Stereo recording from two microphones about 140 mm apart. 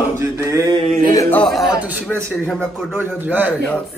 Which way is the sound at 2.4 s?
5° left (ahead or behind).